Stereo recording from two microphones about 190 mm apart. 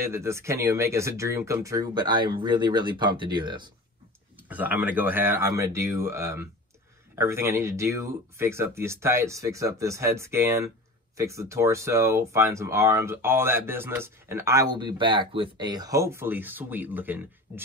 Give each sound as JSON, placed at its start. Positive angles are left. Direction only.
{"t": 0.0, "sound": "speech", "side_deg": -15}
{"t": 4.5, "sound": "speech", "side_deg": -10}